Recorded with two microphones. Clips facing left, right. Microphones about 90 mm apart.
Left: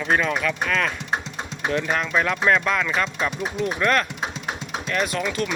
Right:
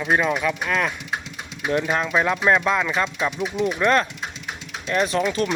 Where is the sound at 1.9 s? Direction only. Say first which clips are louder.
Right 1 dB; 15° right (ahead or behind).